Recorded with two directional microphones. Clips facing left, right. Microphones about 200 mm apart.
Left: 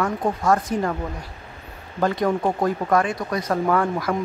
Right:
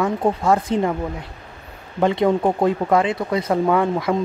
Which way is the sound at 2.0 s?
20° right (ahead or behind).